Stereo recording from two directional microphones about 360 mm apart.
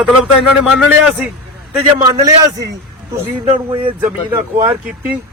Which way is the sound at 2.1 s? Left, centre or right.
Centre.